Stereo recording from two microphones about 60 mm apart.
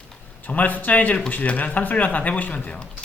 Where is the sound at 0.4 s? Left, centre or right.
Left.